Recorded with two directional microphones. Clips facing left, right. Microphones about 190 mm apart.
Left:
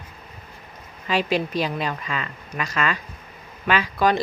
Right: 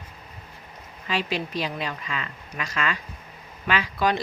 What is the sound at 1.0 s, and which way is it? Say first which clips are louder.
A woman's voice: left 5 dB; 45° left (ahead or behind).